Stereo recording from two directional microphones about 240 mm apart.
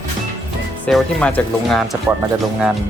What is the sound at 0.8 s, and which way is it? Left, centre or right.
Speech, centre.